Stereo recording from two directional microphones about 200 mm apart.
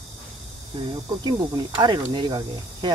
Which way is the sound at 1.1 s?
20° right (ahead or behind).